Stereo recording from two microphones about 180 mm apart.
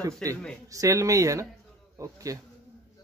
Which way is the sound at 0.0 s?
20° right (ahead or behind).